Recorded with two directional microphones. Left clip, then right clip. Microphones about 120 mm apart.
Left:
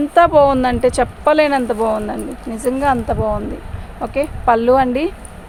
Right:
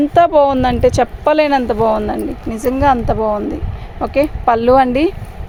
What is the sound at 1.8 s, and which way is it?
Speech, 85° right.